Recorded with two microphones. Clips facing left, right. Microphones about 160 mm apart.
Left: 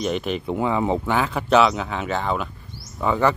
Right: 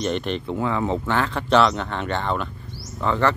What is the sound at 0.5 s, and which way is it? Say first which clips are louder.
Speech: left 3 dB; 15° left (ahead or behind).